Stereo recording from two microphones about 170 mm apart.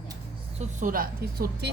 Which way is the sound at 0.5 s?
50° right (ahead or behind).